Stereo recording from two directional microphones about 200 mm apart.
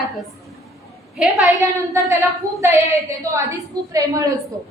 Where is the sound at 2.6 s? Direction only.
15° right (ahead or behind).